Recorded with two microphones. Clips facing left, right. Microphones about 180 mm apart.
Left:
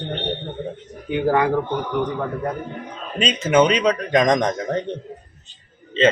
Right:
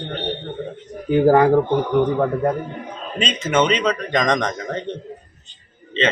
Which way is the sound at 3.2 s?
10° left (ahead or behind).